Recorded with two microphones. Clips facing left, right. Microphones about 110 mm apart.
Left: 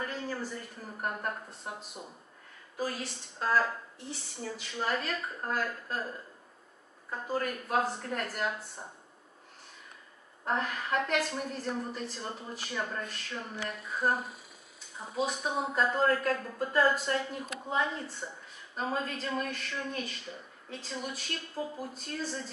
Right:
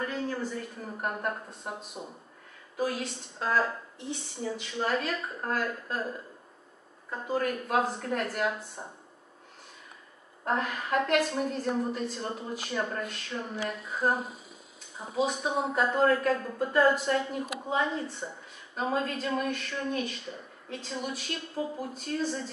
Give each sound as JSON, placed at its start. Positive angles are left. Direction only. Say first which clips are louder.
{"t": 0.0, "sound": "a sound", "louder": "right 4 dB", "side_deg": 5}
{"t": 1.0, "sound": "a woman's voice", "louder": "right 2 dB", "side_deg": -5}
{"t": 10.4, "sound": "speech", "louder": "right 2 dB", "side_deg": -5}
{"t": 14.0, "sound": "speech", "louder": "right 2 dB", "side_deg": -20}
{"t": 15.1, "sound": "speech", "louder": "right 3 dB", "side_deg": 0}